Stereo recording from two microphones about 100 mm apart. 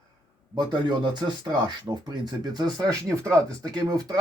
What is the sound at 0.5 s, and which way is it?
Speech, 50° right (ahead or behind).